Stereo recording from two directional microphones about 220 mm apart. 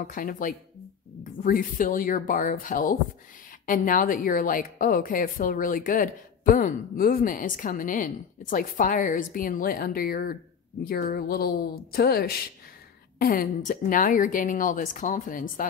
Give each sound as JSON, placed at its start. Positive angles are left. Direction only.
{"t": 0.0, "sound": "a woman's voice", "side_deg": 40}